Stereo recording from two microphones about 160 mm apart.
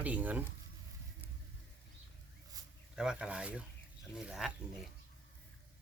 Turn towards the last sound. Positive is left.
turn(degrees=0)  # may be behind; listen again after turning